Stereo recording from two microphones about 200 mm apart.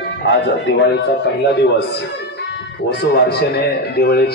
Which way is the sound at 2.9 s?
55° left (ahead or behind).